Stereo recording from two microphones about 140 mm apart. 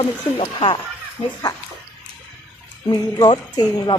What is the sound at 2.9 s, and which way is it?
Speech, 30° left (ahead or behind).